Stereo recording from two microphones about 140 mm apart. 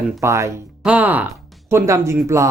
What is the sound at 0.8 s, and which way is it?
Speech, 10° right (ahead or behind).